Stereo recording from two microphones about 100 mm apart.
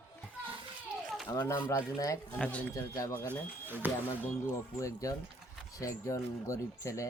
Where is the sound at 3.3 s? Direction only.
20° right (ahead or behind).